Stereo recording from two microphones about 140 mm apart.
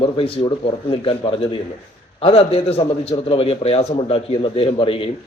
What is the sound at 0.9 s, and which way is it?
A man's voice, 40° left (ahead or behind).